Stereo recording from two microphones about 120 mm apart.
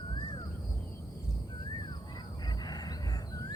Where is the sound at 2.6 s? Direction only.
35° left (ahead or behind).